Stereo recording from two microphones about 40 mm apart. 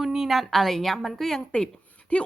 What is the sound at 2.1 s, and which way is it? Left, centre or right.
Speech, left.